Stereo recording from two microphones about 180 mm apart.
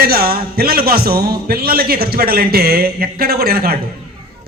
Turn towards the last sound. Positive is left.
turn(degrees=-60)  # may be behind; listen again after turning